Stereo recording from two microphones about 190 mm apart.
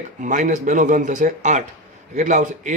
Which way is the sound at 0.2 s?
40° right (ahead or behind).